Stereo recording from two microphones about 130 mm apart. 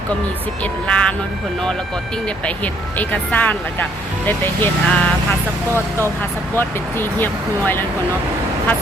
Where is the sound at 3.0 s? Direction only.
10° left (ahead or behind).